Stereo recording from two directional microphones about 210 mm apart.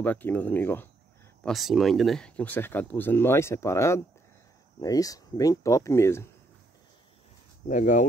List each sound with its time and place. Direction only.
0.0 s speech: 10° left (ahead or behind)
7.6 s speech: 35° left (ahead or behind)